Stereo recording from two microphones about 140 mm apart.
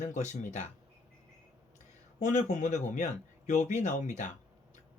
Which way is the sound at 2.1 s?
60° left (ahead or behind).